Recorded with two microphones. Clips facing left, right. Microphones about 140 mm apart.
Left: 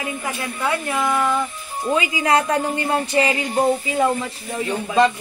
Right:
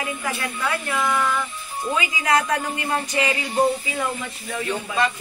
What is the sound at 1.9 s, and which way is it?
Speech, 30° left (ahead or behind).